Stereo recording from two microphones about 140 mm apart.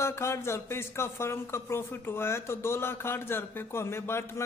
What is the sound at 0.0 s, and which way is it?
A man's voice, 20° left (ahead or behind).